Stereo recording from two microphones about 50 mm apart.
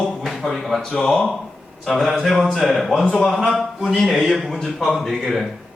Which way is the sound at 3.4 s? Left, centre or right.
Centre.